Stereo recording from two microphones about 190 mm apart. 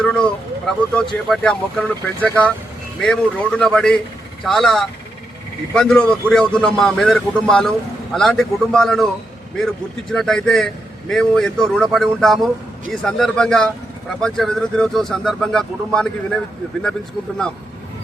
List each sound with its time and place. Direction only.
0.0 s vehicle: 5° left (ahead or behind)
0.9 s a man's voice: 5° left (ahead or behind)